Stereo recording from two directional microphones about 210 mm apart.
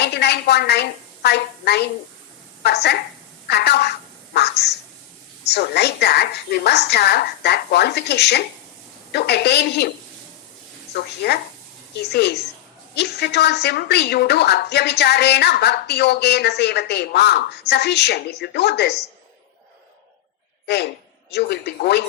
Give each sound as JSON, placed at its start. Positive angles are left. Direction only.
{"t": 0.0, "sound": "a woman's voice", "side_deg": 50}
{"t": 10.9, "sound": "a woman's voice", "side_deg": 50}
{"t": 20.7, "sound": "a woman's voice", "side_deg": 50}